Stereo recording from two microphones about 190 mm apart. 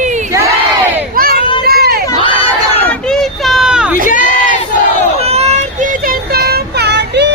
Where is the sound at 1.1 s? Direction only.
50° right (ahead or behind).